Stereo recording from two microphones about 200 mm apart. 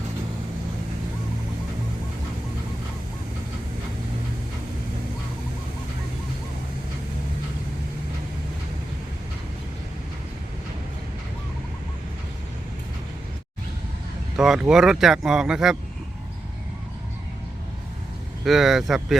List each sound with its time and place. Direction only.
14.3 s speech: centre (ahead or behind)
18.4 s speech: centre (ahead or behind)